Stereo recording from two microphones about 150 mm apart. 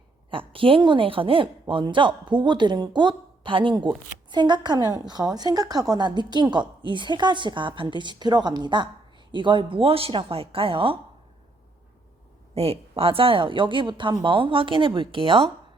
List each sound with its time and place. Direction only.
0.3 s a woman's voice: 35° right (ahead or behind)
12.5 s a woman's voice: 40° right (ahead or behind)